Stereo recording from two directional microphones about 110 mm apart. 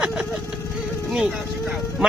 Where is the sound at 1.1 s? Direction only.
5° right (ahead or behind).